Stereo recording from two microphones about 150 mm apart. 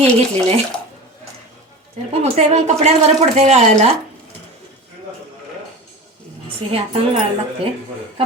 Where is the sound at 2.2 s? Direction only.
45° right (ahead or behind).